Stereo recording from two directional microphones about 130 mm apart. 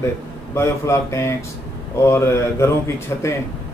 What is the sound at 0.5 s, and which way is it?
A man's voice, 20° left (ahead or behind).